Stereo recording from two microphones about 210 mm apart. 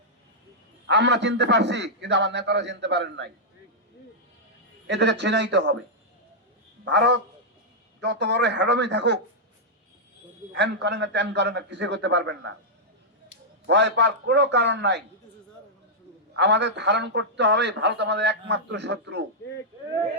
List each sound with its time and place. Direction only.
0.9 s a man's voice: 55° right (ahead or behind)
4.9 s a man's voice: 55° right (ahead or behind)
6.8 s a man's voice: 55° right (ahead or behind)
10.5 s a man's voice: 55° right (ahead or behind)
13.7 s a man's voice: 55° right (ahead or behind)
16.3 s a man's voice: 55° right (ahead or behind)